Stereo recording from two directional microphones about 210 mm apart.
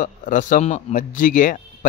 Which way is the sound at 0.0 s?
40° left (ahead or behind).